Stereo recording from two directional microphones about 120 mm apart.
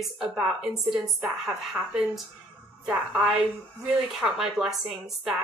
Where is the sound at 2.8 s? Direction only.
5° right (ahead or behind).